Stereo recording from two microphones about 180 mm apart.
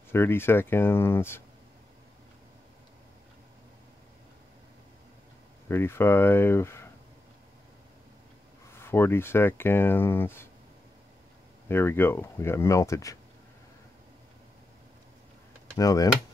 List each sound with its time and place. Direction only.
0.1 s speech: 15° left (ahead or behind)
5.7 s speech: 15° left (ahead or behind)
8.7 s speech: 15° left (ahead or behind)
11.7 s speech: 15° left (ahead or behind)
15.8 s speech: 20° left (ahead or behind)